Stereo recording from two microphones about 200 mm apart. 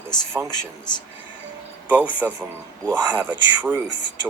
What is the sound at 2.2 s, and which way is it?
Speech, 10° right (ahead or behind).